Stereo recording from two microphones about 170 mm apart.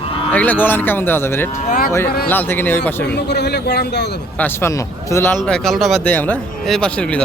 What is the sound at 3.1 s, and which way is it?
Speech, 75° left (ahead or behind).